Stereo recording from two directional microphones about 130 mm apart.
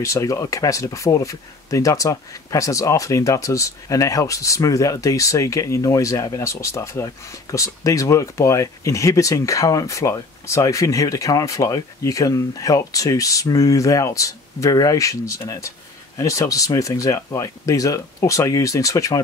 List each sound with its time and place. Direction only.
0.0 s speech: 25° left (ahead or behind)